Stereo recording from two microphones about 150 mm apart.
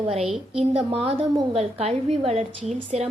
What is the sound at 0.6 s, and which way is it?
A woman's voice, 40° right (ahead or behind).